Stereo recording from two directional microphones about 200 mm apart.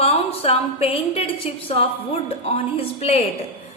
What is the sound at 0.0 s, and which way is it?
A woman's voice, 30° left (ahead or behind).